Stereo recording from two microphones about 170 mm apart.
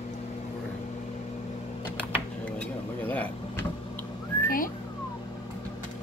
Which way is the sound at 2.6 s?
10° left (ahead or behind).